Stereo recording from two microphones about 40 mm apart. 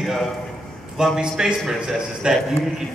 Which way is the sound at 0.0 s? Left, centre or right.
Centre.